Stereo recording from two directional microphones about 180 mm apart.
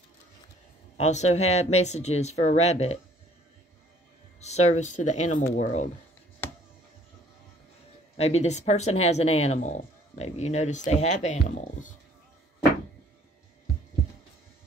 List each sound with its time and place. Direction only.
0.9 s speech: 40° left (ahead or behind)
4.4 s speech: 40° left (ahead or behind)
8.2 s speech: 35° left (ahead or behind)